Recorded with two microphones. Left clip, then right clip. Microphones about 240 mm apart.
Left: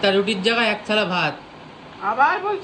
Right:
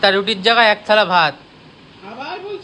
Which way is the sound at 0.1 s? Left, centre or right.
Right.